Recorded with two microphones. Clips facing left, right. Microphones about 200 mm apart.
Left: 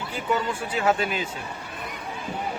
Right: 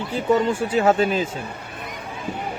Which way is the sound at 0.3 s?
35° right (ahead or behind).